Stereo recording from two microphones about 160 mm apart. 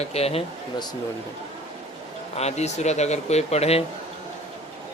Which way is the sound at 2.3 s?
45° left (ahead or behind).